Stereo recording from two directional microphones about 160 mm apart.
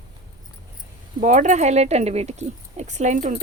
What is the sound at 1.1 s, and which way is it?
Speech, 50° right (ahead or behind).